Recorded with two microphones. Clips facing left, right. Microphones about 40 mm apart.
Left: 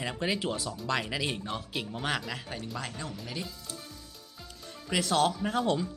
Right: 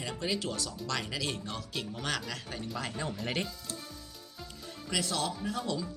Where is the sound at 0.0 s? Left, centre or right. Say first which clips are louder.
Left 3 dB; left.